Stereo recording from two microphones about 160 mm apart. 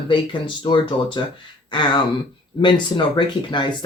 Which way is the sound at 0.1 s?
30° left (ahead or behind).